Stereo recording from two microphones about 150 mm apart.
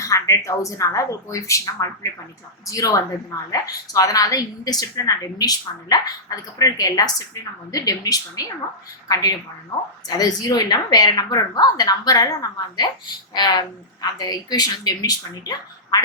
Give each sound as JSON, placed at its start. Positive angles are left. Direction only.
{"t": 0.0, "sound": "a woman's voice", "side_deg": 20}